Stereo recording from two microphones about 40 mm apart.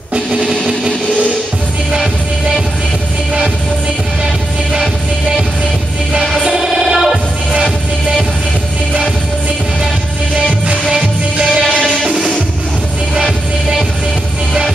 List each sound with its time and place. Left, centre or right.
0.1 s music: right
6.4 s music: centre